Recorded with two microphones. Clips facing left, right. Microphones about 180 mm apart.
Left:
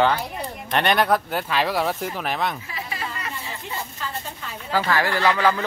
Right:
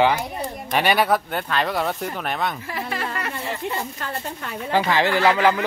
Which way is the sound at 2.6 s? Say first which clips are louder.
Right 4 dB; 55° right (ahead or behind).